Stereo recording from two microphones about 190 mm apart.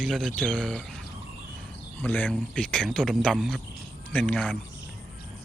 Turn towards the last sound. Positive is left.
turn(degrees=10)  # may be behind; listen again after turning